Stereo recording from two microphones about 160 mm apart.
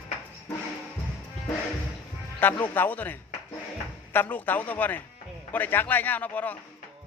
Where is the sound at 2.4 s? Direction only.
10° left (ahead or behind).